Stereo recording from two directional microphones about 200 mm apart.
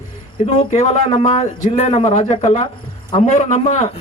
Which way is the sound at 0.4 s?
30° left (ahead or behind).